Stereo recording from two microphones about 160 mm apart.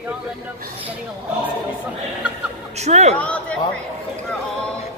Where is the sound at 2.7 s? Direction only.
45° right (ahead or behind).